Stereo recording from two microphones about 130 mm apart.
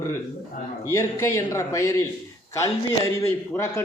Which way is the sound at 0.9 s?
20° left (ahead or behind).